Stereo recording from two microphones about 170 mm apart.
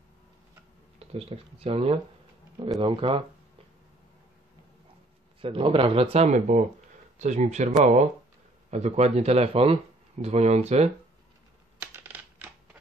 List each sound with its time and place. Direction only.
0.9 s speech: 35° right (ahead or behind)
5.4 s speech: 30° right (ahead or behind)
11.8 s coin: 10° right (ahead or behind)